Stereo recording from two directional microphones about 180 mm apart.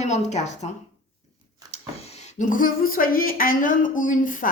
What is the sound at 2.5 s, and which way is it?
A woman's voice, 50° left (ahead or behind).